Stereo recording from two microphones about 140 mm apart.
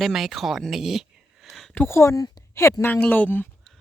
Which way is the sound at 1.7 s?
15° left (ahead or behind).